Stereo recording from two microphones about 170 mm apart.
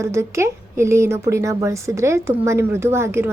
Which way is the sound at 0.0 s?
15° right (ahead or behind).